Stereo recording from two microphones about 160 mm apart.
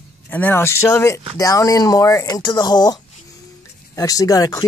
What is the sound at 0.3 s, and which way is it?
Speech, 15° left (ahead or behind).